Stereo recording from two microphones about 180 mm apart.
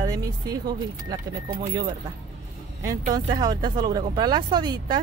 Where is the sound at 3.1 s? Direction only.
20° right (ahead or behind).